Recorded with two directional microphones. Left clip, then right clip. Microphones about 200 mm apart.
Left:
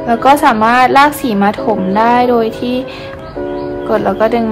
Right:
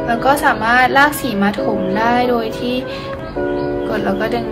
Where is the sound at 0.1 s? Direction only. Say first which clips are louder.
Left 6 dB; 30° left (ahead or behind).